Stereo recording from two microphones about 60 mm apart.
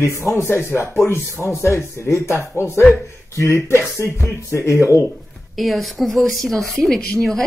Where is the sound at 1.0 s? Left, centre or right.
Left.